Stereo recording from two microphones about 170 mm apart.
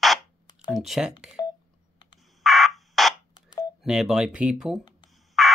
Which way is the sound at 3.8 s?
5° right (ahead or behind).